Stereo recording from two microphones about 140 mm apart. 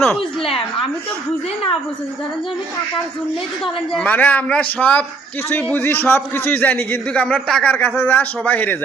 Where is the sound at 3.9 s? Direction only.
10° left (ahead or behind).